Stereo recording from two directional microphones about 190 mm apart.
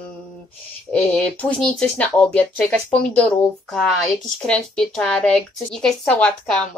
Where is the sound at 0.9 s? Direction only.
5° left (ahead or behind).